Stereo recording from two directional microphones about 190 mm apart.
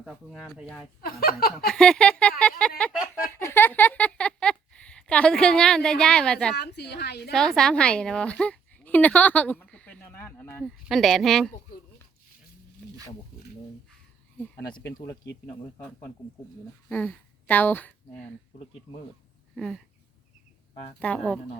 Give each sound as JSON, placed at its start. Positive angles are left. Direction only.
{"t": 0.0, "sound": "speech", "side_deg": 0}
{"t": 1.0, "sound": "speech", "side_deg": 50}
{"t": 1.6, "sound": "speech", "side_deg": 5}
{"t": 3.3, "sound": "a sound", "side_deg": 10}
{"t": 6.6, "sound": "a woman's voice", "side_deg": 60}
{"t": 7.3, "sound": "a sound", "side_deg": 5}
{"t": 10.8, "sound": "speech", "side_deg": 0}
{"t": 14.8, "sound": "speech", "side_deg": 15}
{"t": 16.9, "sound": "a woman's voice", "side_deg": 10}
{"t": 19.5, "sound": "speech", "side_deg": 5}
{"t": 21.0, "sound": "speech", "side_deg": 5}